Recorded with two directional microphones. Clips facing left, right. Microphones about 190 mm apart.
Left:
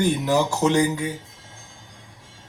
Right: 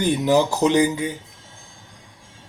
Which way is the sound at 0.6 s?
20° right (ahead or behind).